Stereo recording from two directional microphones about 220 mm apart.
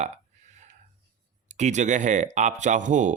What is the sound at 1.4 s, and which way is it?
Speech, 30° right (ahead or behind).